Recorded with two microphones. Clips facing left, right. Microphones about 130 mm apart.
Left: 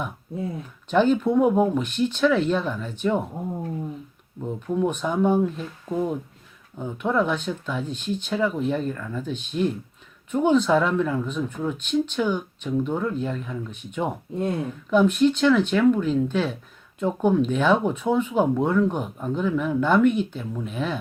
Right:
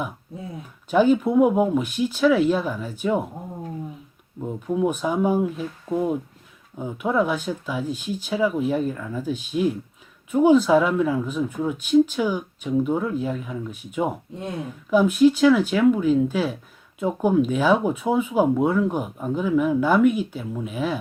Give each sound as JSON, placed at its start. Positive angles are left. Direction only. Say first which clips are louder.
{"t": 0.9, "sound": "speech", "louder": "right 2 dB", "side_deg": -5}
{"t": 4.4, "sound": "speech", "louder": "right 1 dB", "side_deg": -10}